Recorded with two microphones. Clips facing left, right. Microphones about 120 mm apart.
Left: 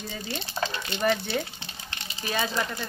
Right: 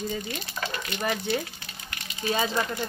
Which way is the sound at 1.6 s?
30° left (ahead or behind).